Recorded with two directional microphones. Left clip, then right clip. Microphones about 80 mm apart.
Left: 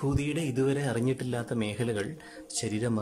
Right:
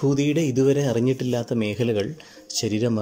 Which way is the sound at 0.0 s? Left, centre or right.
Right.